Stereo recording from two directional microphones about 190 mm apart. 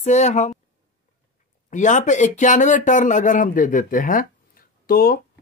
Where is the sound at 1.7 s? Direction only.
40° left (ahead or behind).